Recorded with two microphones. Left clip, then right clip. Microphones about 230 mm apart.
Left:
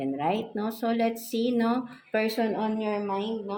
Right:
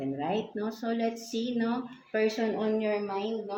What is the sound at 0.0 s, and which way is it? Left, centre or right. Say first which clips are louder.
Speech: left 4 dB; left.